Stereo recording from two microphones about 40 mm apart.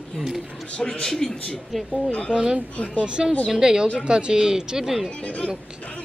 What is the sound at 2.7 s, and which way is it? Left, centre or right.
Speech, left.